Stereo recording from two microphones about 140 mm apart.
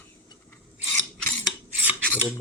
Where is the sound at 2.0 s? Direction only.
10° left (ahead or behind).